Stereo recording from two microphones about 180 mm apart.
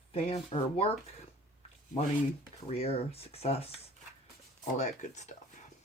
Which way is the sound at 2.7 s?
35° left (ahead or behind).